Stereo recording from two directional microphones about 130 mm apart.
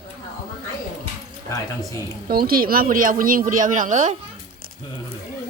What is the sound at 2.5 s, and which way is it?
Speech, 90° right.